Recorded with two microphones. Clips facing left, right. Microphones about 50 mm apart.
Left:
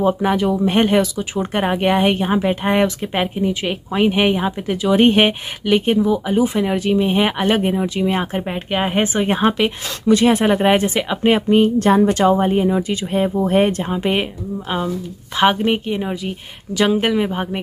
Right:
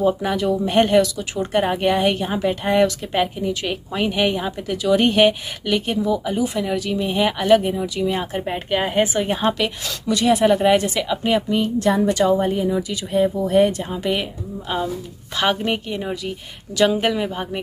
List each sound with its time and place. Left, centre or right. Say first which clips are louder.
0.0 s speech: left 3 dB; left
8.4 s speech: left 1 dB; centre
8.7 s speech: left 1 dB; left
15.3 s a woman's voice: left 5 dB; left